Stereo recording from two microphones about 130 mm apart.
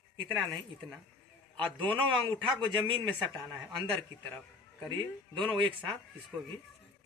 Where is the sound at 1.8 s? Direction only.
40° right (ahead or behind).